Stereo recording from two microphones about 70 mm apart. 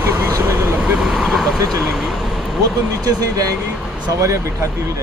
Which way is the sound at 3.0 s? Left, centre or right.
Right.